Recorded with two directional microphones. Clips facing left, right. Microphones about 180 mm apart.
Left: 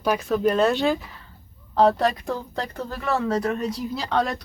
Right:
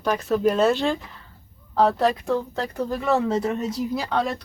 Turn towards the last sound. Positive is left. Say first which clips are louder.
# even
turn(degrees=-5)  # may be behind; listen again after turning